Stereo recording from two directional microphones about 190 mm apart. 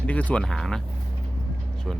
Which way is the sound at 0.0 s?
5° left (ahead or behind).